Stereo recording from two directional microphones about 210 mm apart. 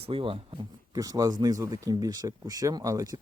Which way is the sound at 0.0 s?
25° right (ahead or behind).